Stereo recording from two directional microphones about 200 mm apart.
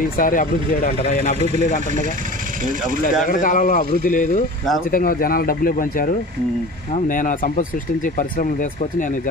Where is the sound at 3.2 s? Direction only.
40° left (ahead or behind).